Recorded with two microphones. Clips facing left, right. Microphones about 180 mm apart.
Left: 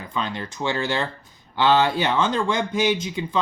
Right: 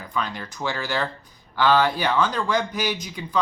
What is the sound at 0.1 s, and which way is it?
Speech, 25° left (ahead or behind).